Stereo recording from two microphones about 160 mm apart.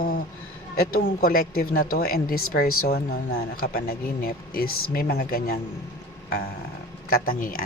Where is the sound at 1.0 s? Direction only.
70° left (ahead or behind).